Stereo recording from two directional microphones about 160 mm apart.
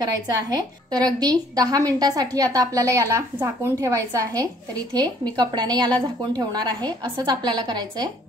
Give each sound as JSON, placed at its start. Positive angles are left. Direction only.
{"t": 0.0, "sound": "a woman's voice", "side_deg": -25}